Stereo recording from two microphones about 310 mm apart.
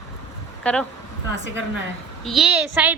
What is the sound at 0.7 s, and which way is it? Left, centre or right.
Speech, centre.